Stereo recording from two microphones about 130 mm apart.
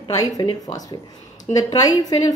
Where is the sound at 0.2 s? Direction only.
30° left (ahead or behind).